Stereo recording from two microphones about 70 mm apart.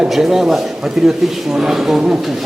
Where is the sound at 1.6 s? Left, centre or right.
Centre.